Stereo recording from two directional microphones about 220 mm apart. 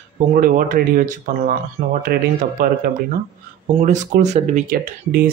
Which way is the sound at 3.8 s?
35° right (ahead or behind).